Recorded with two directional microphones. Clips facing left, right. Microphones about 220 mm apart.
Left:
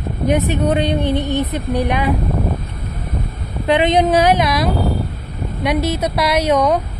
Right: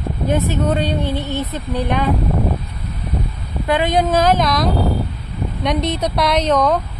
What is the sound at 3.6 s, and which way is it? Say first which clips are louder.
A woman's voice: left 3 dB; 20° left (ahead or behind).